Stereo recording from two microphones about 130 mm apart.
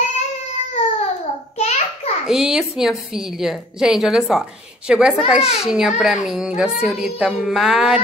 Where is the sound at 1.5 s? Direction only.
55° left (ahead or behind).